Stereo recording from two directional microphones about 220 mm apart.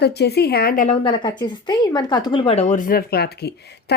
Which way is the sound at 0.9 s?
20° left (ahead or behind).